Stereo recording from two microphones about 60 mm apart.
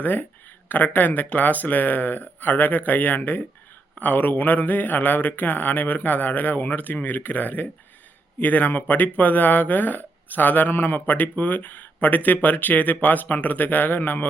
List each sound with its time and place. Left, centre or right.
0.0 s speech: left